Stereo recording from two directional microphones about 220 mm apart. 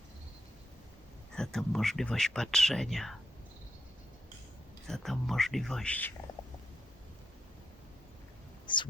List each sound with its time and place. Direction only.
1.4 s speech: centre (ahead or behind)
4.9 s speech: centre (ahead or behind)
8.6 s a sound: 20° left (ahead or behind)